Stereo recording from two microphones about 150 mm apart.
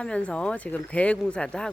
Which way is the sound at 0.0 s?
5° left (ahead or behind).